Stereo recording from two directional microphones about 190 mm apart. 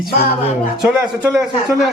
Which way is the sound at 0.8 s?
5° right (ahead or behind).